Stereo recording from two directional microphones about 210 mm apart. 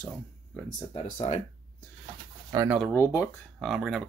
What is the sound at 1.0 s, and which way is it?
Speech, 35° left (ahead or behind).